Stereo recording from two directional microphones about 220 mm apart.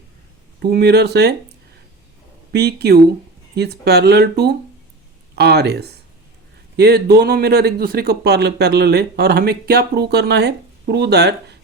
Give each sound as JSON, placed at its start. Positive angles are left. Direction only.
{"t": 0.6, "sound": "speech", "side_deg": -45}
{"t": 2.5, "sound": "speech", "side_deg": -45}